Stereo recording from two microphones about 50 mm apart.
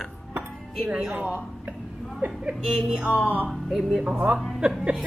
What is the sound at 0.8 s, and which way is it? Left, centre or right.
Music, centre.